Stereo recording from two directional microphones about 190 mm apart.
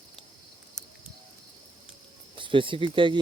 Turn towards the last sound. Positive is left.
turn(degrees=-25)  # may be behind; listen again after turning